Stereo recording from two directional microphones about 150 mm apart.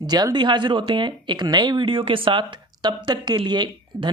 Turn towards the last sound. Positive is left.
turn(degrees=-30)  # may be behind; listen again after turning